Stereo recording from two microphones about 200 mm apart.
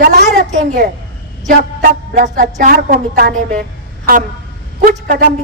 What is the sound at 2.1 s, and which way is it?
A woman's voice, 40° right (ahead or behind).